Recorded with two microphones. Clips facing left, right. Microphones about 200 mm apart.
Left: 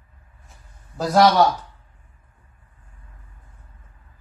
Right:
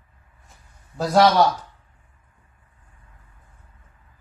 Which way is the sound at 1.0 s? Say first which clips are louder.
Left 1 dB; centre (ahead or behind).